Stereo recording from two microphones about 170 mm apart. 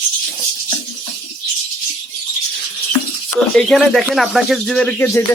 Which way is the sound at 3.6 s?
Centre (ahead or behind).